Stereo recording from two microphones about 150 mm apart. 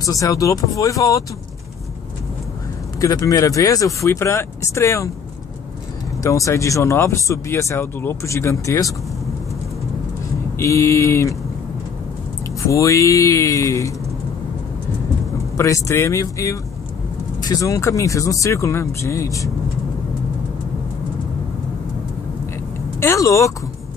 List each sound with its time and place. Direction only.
0.0 s speech: 20° left (ahead or behind)
3.0 s speech: 25° left (ahead or behind)
6.2 s speech: 20° left (ahead or behind)
10.6 s speech: 20° left (ahead or behind)
12.6 s speech: 20° left (ahead or behind)
15.5 s speech: 20° left (ahead or behind)
22.9 s speech: 20° left (ahead or behind)